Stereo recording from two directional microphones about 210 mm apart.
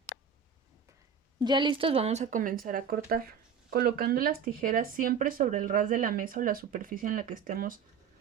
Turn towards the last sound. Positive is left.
turn(degrees=-40)  # may be behind; listen again after turning